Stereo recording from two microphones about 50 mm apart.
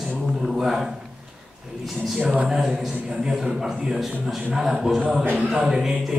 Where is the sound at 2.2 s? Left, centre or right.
Right.